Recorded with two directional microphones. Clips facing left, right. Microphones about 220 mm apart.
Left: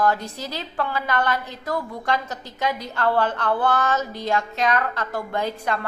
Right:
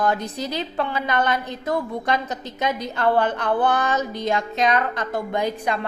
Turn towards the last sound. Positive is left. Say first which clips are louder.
# right 2 dB
turn(degrees=-15)  # may be behind; listen again after turning